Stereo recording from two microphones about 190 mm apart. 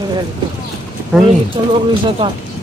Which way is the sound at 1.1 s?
5° right (ahead or behind).